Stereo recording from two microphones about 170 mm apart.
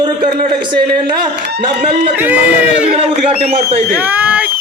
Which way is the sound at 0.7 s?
30° right (ahead or behind).